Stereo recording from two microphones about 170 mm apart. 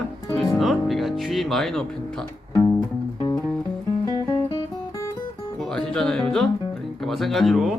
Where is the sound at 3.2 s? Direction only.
25° left (ahead or behind).